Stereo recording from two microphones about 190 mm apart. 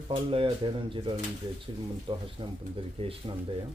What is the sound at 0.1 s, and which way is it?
Speech, 30° right (ahead or behind).